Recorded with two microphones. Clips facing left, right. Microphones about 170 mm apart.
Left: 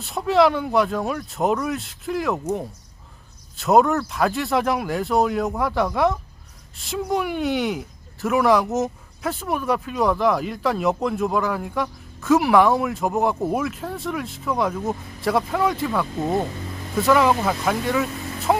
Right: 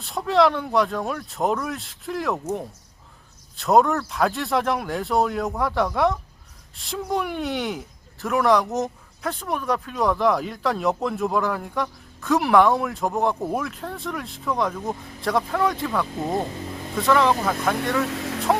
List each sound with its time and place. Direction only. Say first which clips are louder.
0.0 s speech: left 2 dB; centre (ahead or behind)
18.1 s vehicle: right 3 dB; 90° right